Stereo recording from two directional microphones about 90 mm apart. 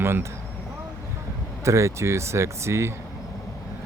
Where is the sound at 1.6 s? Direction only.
30° right (ahead or behind).